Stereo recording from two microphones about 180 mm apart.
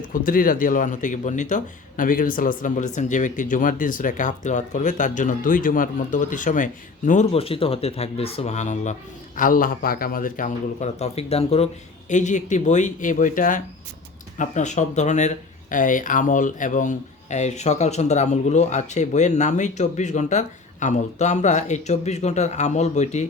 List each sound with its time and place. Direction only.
0.3 s speech: 50° left (ahead or behind)
7.3 s speech: 30° left (ahead or behind)